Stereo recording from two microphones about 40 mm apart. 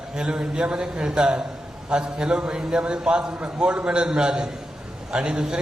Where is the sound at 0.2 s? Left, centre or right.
Centre.